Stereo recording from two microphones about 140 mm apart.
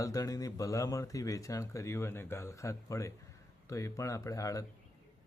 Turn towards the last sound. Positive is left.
turn(degrees=25)  # may be behind; listen again after turning